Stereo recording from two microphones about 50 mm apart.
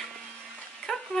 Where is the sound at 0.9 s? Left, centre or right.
Centre.